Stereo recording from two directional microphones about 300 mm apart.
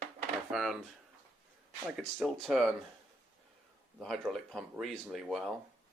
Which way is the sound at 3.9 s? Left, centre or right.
Centre.